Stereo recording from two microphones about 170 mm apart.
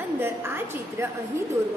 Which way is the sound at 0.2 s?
15° right (ahead or behind).